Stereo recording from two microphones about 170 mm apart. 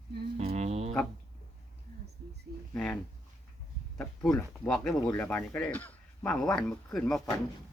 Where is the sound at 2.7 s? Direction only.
5° left (ahead or behind).